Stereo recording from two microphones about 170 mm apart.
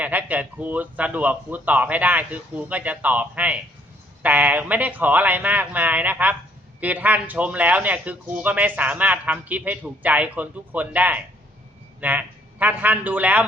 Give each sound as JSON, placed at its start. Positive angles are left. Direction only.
{"t": 0.0, "sound": "a man's voice", "side_deg": -10}